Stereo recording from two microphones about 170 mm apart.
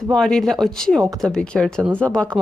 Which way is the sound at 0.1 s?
5° left (ahead or behind).